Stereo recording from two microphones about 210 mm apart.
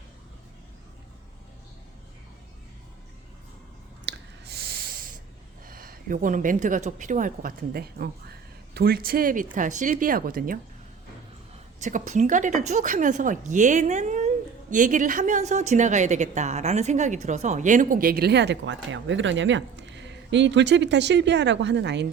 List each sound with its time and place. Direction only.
4.0 s a sound: 50° right (ahead or behind)
5.6 s speech: 45° right (ahead or behind)
11.8 s speech: 35° right (ahead or behind); by 22.0 s 55° right (ahead or behind)